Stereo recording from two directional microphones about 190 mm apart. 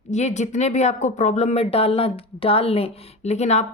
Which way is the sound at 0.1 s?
35° left (ahead or behind).